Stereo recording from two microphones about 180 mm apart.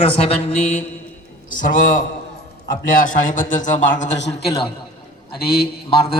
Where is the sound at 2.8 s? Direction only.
50° left (ahead or behind).